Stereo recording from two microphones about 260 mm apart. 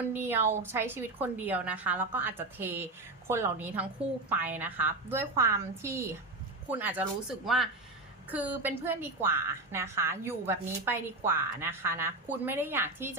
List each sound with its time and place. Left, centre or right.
0.1 s a woman's voice: centre